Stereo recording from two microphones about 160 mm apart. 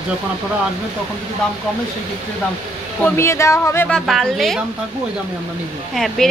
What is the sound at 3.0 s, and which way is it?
Speech, 15° left (ahead or behind).